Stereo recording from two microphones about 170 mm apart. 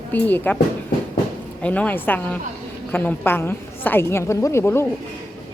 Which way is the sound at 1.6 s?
10° left (ahead or behind).